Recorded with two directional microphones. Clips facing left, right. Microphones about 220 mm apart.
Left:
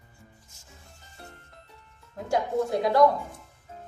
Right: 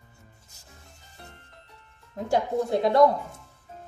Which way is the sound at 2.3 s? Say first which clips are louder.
Right 1 dB; 25° right (ahead or behind).